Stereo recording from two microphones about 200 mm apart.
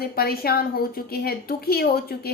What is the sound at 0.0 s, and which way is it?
A woman's voice, 50° left (ahead or behind).